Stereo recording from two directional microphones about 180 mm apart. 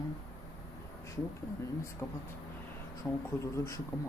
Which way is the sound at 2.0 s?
10° left (ahead or behind).